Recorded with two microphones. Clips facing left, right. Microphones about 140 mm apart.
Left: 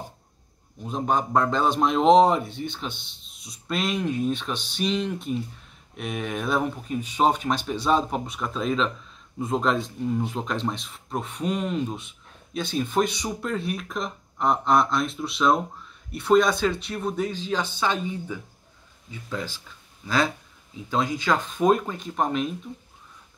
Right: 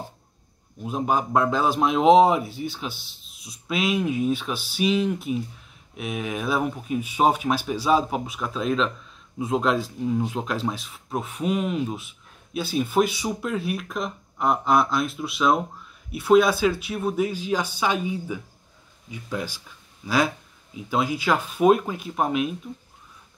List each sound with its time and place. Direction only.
0.8 s a man's voice: 5° right (ahead or behind)